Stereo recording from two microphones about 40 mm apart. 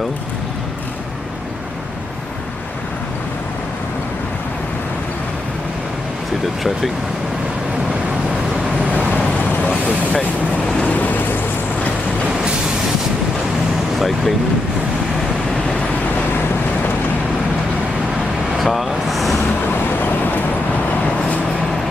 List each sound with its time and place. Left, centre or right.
8.9 s vehicle: left
13.9 s speech: centre
18.6 s vehicle: centre